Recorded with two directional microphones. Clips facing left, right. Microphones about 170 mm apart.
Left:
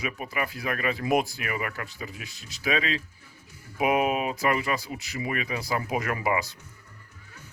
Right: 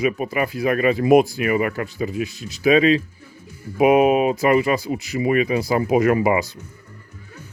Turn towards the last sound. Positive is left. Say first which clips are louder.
# right 10 dB
turn(degrees=-20)  # may be behind; listen again after turning